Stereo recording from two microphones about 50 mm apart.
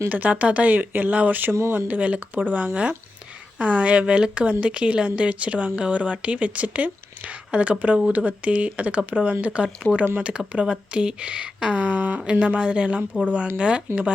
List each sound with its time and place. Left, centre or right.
0.1 s speech: right